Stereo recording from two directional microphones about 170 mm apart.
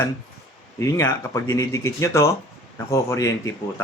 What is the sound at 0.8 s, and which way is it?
Speech, 15° left (ahead or behind).